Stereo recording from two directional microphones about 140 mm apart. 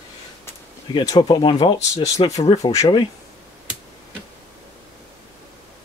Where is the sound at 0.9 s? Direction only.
25° left (ahead or behind).